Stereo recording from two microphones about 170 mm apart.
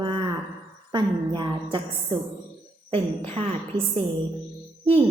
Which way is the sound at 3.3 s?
35° right (ahead or behind).